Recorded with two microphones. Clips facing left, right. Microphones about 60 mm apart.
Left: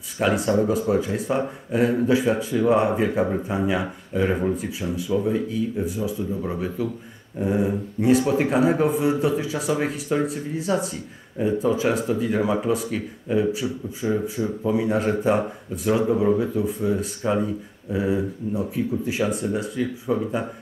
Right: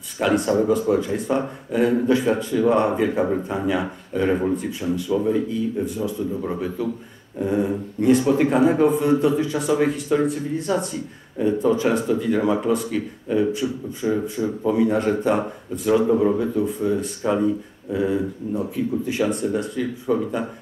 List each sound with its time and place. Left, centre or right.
0.2 s speech: centre